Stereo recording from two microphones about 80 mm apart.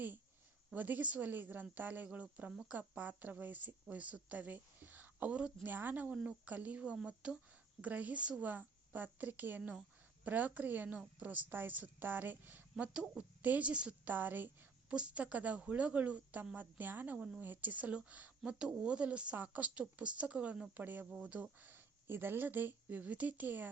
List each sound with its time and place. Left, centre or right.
0.7 s speech: right
12.7 s a woman's voice: centre